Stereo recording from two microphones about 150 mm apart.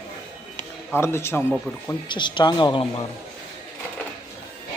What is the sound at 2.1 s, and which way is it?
Speech, 30° left (ahead or behind).